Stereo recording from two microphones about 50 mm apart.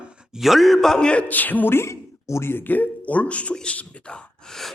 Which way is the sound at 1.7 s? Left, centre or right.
Left.